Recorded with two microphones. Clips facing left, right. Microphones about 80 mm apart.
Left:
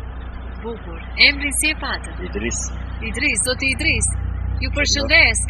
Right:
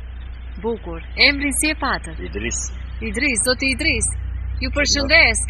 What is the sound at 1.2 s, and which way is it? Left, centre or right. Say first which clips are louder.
Speech: right 1 dB; right.